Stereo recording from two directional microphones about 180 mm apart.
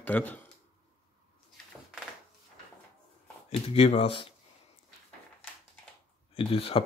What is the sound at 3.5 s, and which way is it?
Speech, 35° left (ahead or behind).